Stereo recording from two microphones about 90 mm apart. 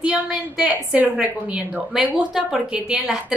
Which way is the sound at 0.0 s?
5° right (ahead or behind).